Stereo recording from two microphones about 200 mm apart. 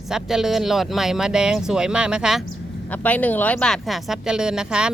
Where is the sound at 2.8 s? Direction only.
5° left (ahead or behind).